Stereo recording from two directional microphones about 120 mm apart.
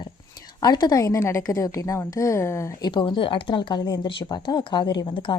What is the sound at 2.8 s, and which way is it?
Speech, 40° left (ahead or behind).